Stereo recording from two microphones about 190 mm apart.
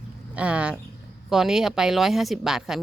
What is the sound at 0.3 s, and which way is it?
Speech, 5° right (ahead or behind).